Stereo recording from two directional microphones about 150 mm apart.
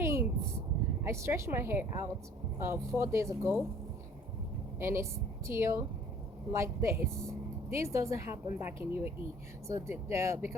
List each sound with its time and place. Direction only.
0.0 s a sound: 15° right (ahead or behind)
1.0 s speech: 20° right (ahead or behind)
4.8 s speech: 15° right (ahead or behind)